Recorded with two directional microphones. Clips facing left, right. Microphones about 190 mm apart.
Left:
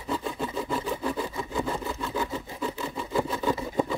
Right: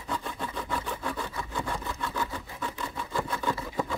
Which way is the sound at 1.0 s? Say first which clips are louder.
Left 4 dB; 15° left (ahead or behind).